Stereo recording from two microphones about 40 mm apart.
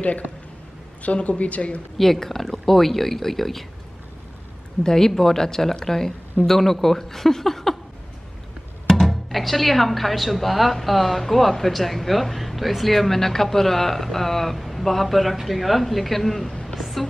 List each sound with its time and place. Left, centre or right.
0.0 s speech: left
2.0 s speech: centre
4.8 s speech: centre
8.8 s speech: centre
16.6 s a sound: centre